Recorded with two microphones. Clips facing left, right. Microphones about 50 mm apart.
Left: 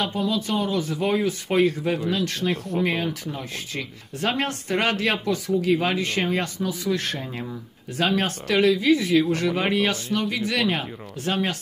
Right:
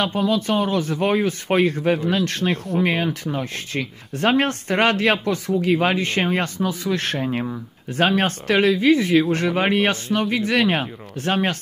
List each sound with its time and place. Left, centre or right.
0.3 s speech: right
7.9 s speech: right